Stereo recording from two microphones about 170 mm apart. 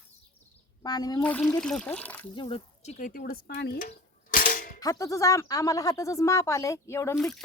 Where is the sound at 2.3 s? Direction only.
30° left (ahead or behind); by 3.7 s 65° left (ahead or behind).